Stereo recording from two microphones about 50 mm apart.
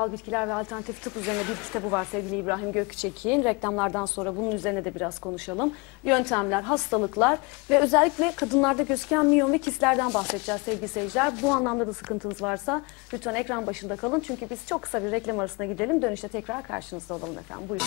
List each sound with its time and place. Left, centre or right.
0.0 s speech: centre